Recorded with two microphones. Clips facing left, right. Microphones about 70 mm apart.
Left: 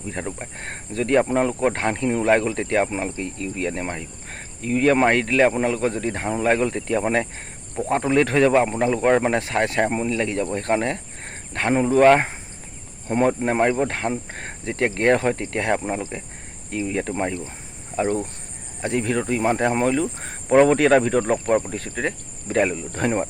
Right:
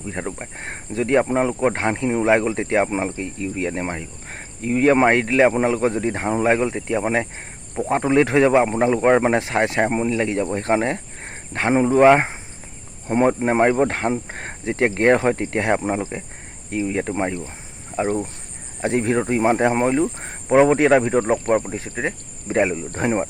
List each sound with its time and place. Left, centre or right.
0.1 s a man's voice: centre
18.8 s a man's voice: right